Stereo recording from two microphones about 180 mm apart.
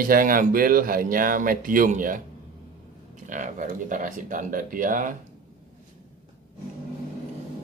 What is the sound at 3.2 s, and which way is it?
Speech, 45° right (ahead or behind).